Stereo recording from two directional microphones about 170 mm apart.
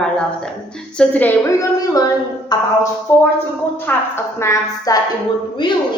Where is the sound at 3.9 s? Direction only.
15° left (ahead or behind).